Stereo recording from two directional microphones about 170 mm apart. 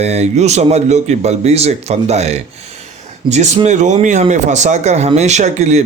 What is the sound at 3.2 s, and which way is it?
Speech, 40° right (ahead or behind).